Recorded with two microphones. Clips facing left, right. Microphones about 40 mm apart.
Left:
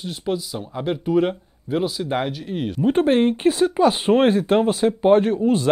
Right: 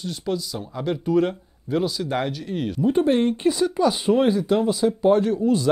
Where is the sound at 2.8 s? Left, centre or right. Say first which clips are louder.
Left 2 dB; left.